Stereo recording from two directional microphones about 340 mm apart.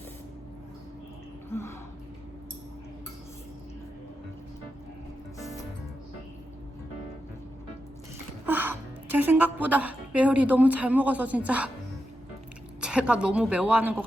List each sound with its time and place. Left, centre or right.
1.5 s music: centre
8.4 s music: centre
9.1 s a woman's voice: centre
12.8 s speech: centre